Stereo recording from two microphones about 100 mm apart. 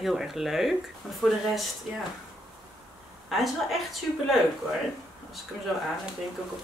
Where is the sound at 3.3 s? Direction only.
Centre (ahead or behind).